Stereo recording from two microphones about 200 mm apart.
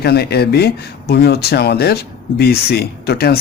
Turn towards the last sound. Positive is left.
turn(degrees=55)  # may be behind; listen again after turning